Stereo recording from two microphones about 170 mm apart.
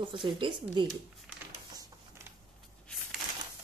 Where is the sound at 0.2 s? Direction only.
30° right (ahead or behind).